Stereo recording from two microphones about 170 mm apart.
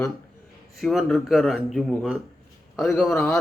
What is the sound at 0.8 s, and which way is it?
Speech, centre (ahead or behind).